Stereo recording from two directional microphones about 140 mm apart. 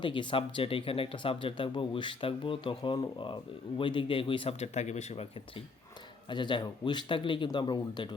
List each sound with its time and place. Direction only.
0.0 s speech: 35° left (ahead or behind)
6.2 s speech: 35° left (ahead or behind)